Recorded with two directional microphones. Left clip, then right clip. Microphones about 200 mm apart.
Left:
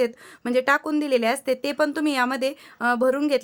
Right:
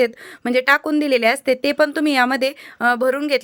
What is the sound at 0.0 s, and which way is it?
Speech, 20° right (ahead or behind).